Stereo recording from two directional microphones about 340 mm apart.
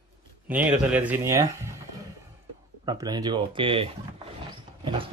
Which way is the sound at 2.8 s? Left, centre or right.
Centre.